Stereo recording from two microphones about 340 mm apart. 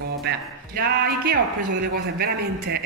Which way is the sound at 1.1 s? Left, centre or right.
Right.